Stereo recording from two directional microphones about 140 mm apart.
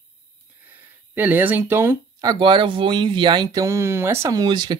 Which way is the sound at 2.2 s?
35° right (ahead or behind).